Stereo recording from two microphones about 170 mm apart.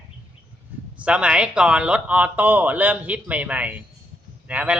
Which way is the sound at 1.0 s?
5° right (ahead or behind).